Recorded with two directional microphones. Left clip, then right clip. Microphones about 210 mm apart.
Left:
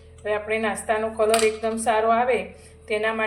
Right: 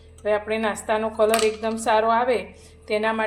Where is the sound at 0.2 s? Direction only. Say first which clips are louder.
Right 2 dB; 35° right (ahead or behind).